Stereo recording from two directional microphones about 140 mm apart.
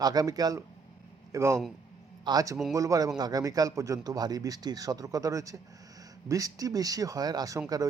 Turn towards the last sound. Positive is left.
turn(degrees=-25)  # may be behind; listen again after turning